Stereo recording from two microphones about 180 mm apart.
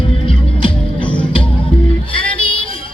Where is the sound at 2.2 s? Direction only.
30° left (ahead or behind).